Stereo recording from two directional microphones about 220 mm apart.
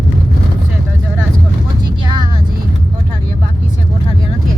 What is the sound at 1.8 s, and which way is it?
Vehicle, 20° right (ahead or behind).